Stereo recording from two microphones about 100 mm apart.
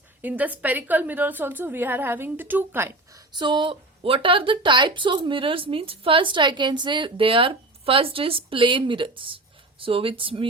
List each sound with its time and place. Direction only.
0.2 s a woman's voice: 15° right (ahead or behind)
3.3 s a woman's voice: 50° right (ahead or behind)